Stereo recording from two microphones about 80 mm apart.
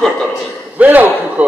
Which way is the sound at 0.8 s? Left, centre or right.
Right.